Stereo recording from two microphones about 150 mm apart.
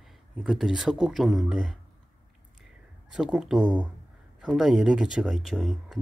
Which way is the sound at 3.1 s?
5° right (ahead or behind).